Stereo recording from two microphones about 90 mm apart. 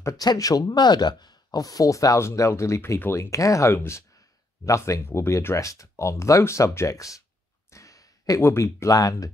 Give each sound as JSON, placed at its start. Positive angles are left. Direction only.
{"t": 0.0, "sound": "speech", "side_deg": 45}
{"t": 7.7, "sound": "a sound", "side_deg": 40}
{"t": 8.4, "sound": "speech", "side_deg": 30}
{"t": 8.9, "sound": "speech", "side_deg": 40}